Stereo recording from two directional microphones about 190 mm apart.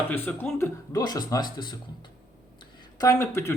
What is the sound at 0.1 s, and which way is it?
Speech, 10° left (ahead or behind).